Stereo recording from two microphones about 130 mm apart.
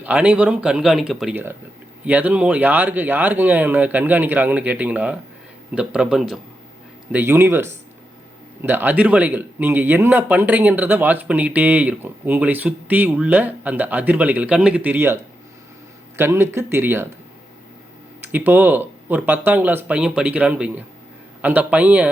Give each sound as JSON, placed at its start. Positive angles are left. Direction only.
{"t": 0.0, "sound": "a man's voice", "side_deg": -10}
{"t": 7.1, "sound": "speech", "side_deg": -15}
{"t": 18.2, "sound": "speech", "side_deg": -15}